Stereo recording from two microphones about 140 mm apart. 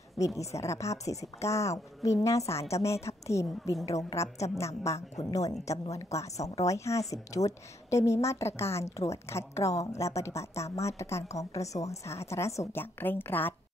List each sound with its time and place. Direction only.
0.4 s a woman's voice: 20° left (ahead or behind)